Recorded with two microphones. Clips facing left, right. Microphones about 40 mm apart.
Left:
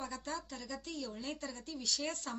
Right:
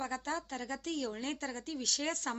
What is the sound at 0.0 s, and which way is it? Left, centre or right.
Speech, right.